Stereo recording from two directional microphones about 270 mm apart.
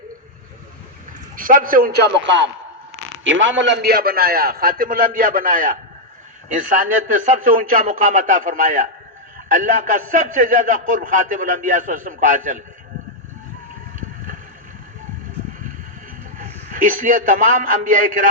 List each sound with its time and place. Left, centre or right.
1.4 s a man's voice: right
16.4 s a man's voice: right